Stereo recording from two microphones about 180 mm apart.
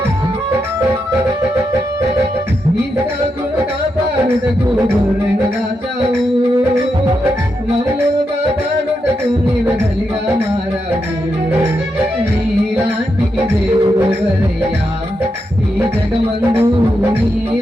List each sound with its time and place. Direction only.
16.5 s music: 15° right (ahead or behind)